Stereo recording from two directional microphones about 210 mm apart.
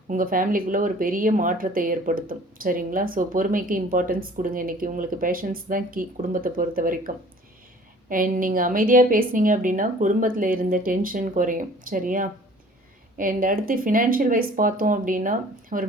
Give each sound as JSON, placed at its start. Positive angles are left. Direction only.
{"t": 0.1, "sound": "speech", "side_deg": -40}
{"t": 8.1, "sound": "speech", "side_deg": -40}